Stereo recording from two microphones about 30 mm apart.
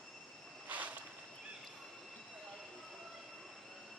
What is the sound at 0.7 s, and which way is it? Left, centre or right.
Vehicle, right.